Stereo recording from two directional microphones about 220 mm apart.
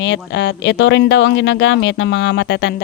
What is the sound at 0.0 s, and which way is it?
Speech, 50° left (ahead or behind).